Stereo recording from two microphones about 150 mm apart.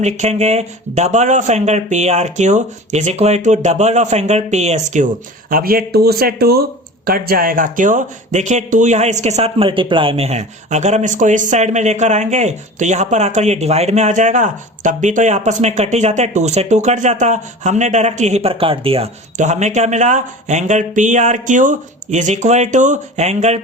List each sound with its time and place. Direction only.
0.0 s speech: 50° right (ahead or behind)
5.5 s speech: 80° right; by 23.6 s 45° right (ahead or behind)